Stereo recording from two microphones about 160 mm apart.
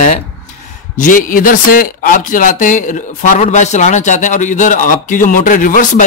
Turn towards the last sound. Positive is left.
turn(degrees=55)  # may be behind; listen again after turning